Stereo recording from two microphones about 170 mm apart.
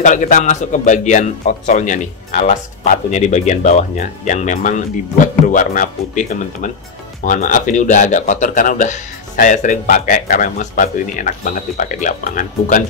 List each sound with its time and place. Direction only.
0.0 s speech: 50° left (ahead or behind)